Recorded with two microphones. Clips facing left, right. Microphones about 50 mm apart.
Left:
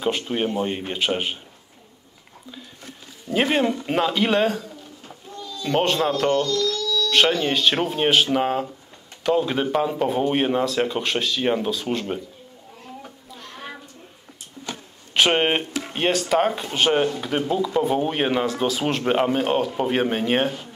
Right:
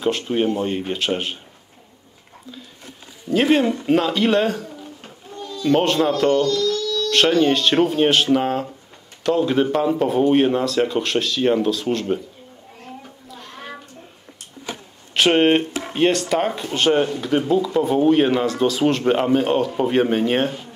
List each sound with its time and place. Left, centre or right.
0.0 s speech: centre
3.3 s speech: centre
6.6 s a sound: right
7.1 s speech: centre
13.3 s a sound: centre
15.1 s speech: centre